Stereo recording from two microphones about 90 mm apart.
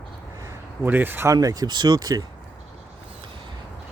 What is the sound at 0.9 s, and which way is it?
Speech, 20° right (ahead or behind).